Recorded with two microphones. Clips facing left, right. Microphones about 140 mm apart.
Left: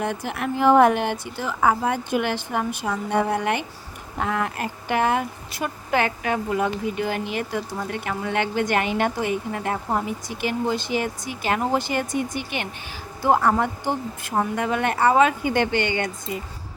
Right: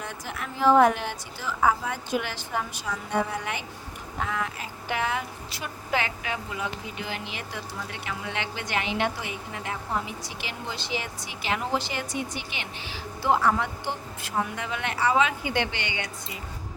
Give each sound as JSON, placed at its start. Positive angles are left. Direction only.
{"t": 0.0, "sound": "a woman's voice", "side_deg": 60}